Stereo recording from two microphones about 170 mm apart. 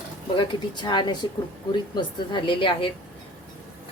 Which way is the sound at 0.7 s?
25° left (ahead or behind).